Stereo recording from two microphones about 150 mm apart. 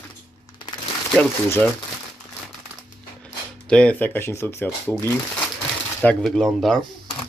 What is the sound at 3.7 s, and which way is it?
Speech, 5° left (ahead or behind).